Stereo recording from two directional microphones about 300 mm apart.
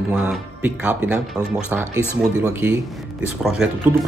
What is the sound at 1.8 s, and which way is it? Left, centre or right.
Speech, centre.